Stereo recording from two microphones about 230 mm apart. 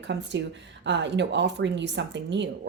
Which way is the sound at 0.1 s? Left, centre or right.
Right.